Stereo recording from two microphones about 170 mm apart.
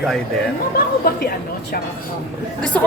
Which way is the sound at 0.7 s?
60° left (ahead or behind).